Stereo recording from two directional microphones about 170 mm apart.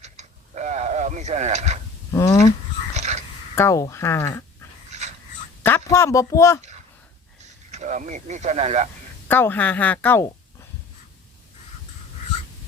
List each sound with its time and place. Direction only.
0.0 s a sound: 45° right (ahead or behind)
2.1 s a sound: 15° left (ahead or behind)
2.9 s wheeze: 40° right (ahead or behind)
3.5 s speech: 15° left (ahead or behind)
4.9 s dog: 40° right (ahead or behind)
5.6 s speech: 15° left (ahead or behind)
7.7 s speech: 45° right (ahead or behind)
9.2 s speech: 10° left (ahead or behind)